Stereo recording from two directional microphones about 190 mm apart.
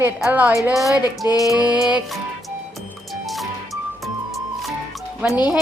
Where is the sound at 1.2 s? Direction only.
15° right (ahead or behind).